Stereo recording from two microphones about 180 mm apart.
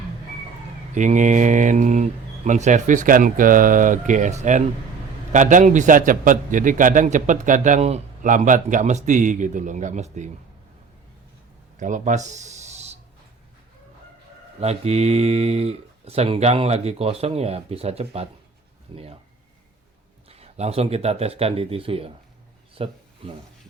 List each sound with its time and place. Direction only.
0.9 s a man's voice: 45° right (ahead or behind)
11.8 s speech: 45° right (ahead or behind)
14.6 s speech: 35° right (ahead or behind)
20.3 s speech: 35° right (ahead or behind)
22.7 s a sound: 30° right (ahead or behind)